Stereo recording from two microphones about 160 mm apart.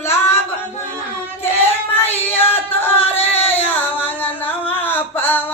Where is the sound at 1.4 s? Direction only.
15° left (ahead or behind).